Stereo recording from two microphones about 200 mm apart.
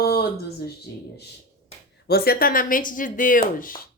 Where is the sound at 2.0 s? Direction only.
50° left (ahead or behind).